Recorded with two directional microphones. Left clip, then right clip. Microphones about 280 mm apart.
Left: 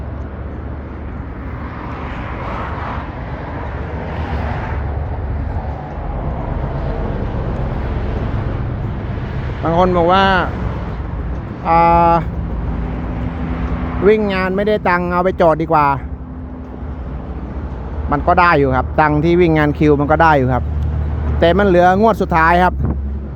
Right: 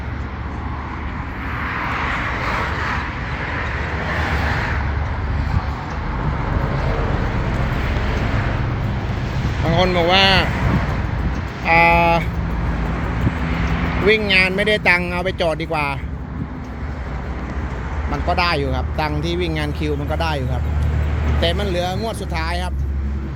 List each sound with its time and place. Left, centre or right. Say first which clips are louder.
9.7 s speech: left 3 dB; centre
11.6 s speech: left 3 dB; centre
14.2 s speech: right 1 dB; centre
18.1 s speech: left 8 dB; left